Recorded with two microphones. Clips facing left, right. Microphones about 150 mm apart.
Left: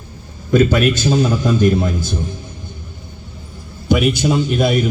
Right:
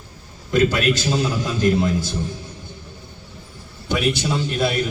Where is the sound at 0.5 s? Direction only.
55° left (ahead or behind).